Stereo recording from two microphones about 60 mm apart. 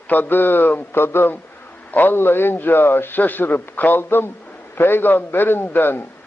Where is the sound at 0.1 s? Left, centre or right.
Left.